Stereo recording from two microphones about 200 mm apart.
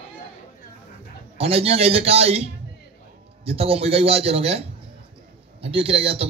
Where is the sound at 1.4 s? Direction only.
30° right (ahead or behind).